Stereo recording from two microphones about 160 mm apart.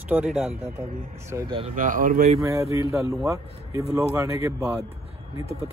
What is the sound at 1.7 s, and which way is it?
Speech, 60° right (ahead or behind).